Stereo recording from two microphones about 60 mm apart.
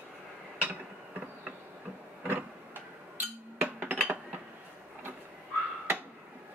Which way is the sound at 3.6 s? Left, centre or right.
Right.